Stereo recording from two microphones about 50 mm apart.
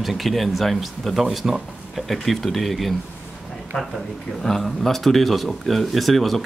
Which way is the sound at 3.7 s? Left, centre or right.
Centre.